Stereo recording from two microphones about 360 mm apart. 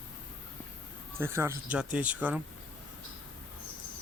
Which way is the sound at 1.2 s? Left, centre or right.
Centre.